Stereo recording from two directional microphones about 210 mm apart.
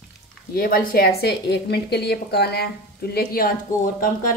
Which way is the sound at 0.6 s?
45° left (ahead or behind).